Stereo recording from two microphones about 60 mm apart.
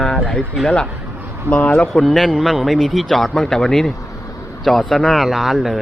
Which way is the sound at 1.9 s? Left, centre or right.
Centre.